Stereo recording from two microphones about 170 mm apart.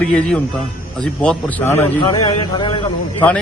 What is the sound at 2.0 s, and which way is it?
Speech, 25° left (ahead or behind).